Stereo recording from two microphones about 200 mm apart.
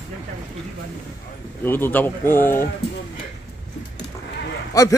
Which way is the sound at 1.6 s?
10° left (ahead or behind).